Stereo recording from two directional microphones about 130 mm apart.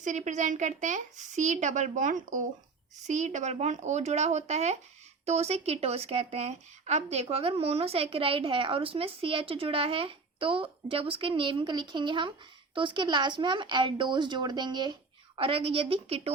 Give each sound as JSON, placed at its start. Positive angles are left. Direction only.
{"t": 0.0, "sound": "a woman's voice", "side_deg": -70}
{"t": 3.1, "sound": "speech", "side_deg": -65}
{"t": 15.4, "sound": "speech", "side_deg": -45}